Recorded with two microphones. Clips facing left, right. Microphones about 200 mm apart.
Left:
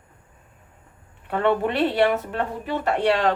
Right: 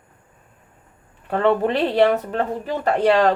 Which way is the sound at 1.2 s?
35° right (ahead or behind).